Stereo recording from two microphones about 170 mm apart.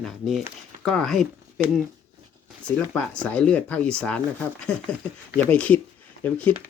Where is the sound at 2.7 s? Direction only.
5° left (ahead or behind).